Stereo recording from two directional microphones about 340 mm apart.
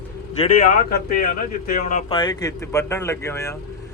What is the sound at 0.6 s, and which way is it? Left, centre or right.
Speech, left.